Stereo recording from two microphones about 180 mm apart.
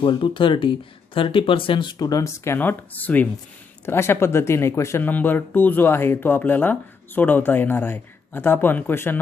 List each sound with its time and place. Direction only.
0.0 s speech: 30° left (ahead or behind); by 9.2 s 10° left (ahead or behind)